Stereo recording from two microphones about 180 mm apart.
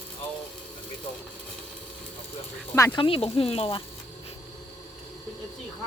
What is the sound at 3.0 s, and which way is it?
Speech, 30° left (ahead or behind).